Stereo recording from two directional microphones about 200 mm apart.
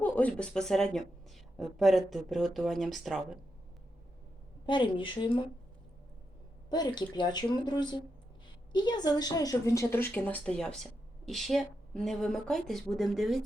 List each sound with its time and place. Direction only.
0.0 s speech: 5° left (ahead or behind)
4.6 s speech: 25° left (ahead or behind)
6.7 s a woman's voice: 20° left (ahead or behind); by 13.4 s centre (ahead or behind)